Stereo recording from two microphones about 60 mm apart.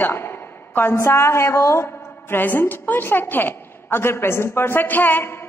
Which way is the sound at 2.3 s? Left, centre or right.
Left.